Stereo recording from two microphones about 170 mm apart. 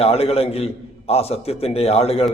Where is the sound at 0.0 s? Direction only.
35° left (ahead or behind).